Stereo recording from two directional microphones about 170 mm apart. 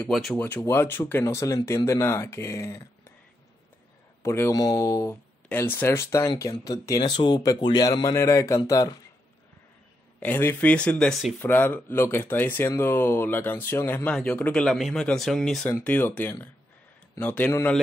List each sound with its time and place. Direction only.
0.0 s speech: centre (ahead or behind); by 2.8 s 15° left (ahead or behind)
4.2 s speech: 15° left (ahead or behind)
10.2 s speech: 10° left (ahead or behind)
11.4 s speech: 10° left (ahead or behind)